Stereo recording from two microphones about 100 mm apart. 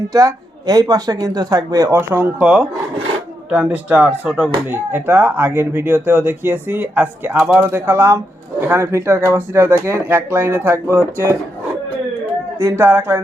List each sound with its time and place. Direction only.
0.1 s speech: 35° right (ahead or behind)
1.9 s speech: 20° right (ahead or behind)
2.4 s speech: 10° right (ahead or behind)
7.7 s speech: 25° right (ahead or behind)
12.5 s speech: 25° right (ahead or behind)